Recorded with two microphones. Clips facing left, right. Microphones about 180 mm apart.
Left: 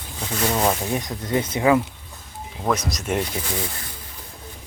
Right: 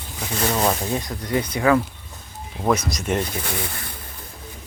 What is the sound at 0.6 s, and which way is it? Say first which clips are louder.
Speech: even; 15° left (ahead or behind).